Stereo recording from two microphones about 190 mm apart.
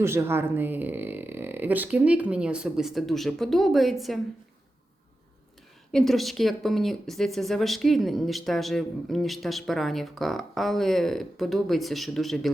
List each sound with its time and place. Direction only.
0.0 s speech: 15° right (ahead or behind)
5.9 s speech: centre (ahead or behind)